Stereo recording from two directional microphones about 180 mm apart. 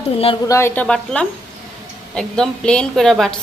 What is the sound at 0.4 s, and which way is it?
A woman's voice, 15° left (ahead or behind).